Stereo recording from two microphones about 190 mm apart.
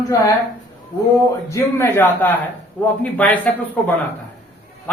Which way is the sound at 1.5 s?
15° left (ahead or behind).